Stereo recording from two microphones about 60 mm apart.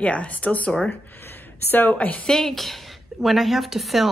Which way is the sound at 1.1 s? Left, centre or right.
Left.